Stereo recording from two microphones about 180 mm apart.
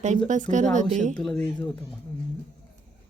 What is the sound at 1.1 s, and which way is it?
Speech, 5° left (ahead or behind).